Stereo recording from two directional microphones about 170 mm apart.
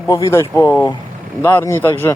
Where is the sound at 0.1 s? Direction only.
20° left (ahead or behind).